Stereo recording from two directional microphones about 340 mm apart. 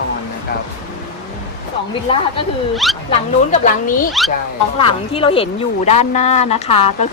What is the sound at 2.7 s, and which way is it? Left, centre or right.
Speech, centre.